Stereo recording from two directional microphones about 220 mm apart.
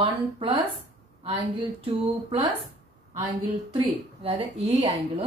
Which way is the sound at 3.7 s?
25° right (ahead or behind).